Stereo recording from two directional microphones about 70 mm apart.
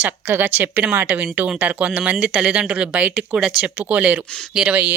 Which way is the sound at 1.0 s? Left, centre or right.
Centre.